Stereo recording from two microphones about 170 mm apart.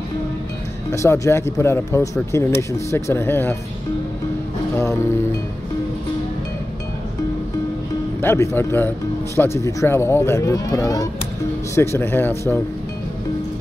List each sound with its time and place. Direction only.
0.9 s speech: 15° left (ahead or behind)
8.2 s speech: 15° left (ahead or behind)